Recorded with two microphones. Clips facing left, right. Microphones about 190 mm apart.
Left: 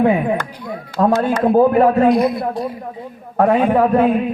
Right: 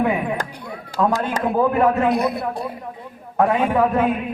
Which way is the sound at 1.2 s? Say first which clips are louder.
Left 6 dB; 35° left (ahead or behind).